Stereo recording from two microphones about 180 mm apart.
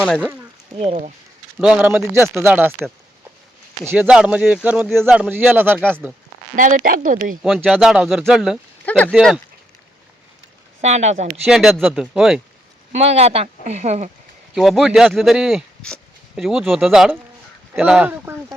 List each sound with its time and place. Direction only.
0.8 s speech: 40° right (ahead or behind)
1.5 s speech: 5° right (ahead or behind)
3.8 s speech: 5° right (ahead or behind)
6.6 s speech: 45° right (ahead or behind)
7.4 s speech: centre (ahead or behind)
10.8 s speech: 40° right (ahead or behind)
11.4 s speech: centre (ahead or behind)
12.9 s speech: 35° right (ahead or behind)
14.5 s speech: centre (ahead or behind)